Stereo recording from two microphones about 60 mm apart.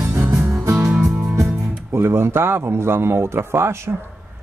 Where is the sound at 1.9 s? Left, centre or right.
Right.